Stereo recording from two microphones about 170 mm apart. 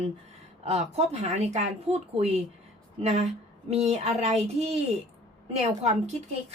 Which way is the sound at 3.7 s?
40° right (ahead or behind).